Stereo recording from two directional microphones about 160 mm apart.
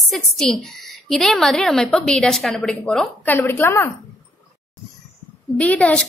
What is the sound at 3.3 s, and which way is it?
Speech, 15° left (ahead or behind).